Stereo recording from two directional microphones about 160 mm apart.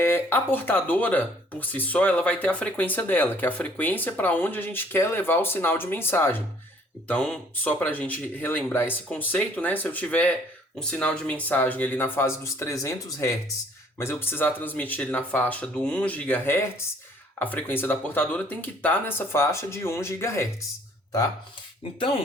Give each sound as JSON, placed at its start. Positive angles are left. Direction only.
{"t": 0.0, "sound": "speech", "side_deg": 15}